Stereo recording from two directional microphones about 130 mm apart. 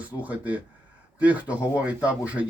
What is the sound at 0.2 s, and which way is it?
Speech, 10° right (ahead or behind).